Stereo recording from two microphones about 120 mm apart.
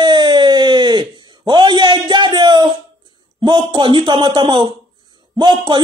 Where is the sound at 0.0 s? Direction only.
40° right (ahead or behind).